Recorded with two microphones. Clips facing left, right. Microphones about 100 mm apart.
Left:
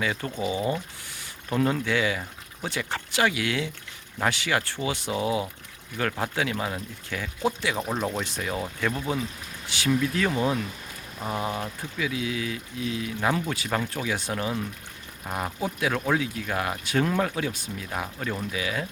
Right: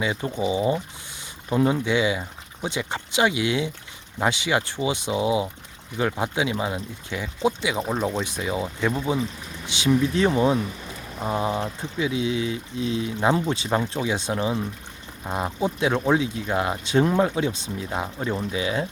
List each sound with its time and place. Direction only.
0.0 s speech: 20° right (ahead or behind)
7.8 s speech: centre (ahead or behind)
8.2 s speech: 15° right (ahead or behind)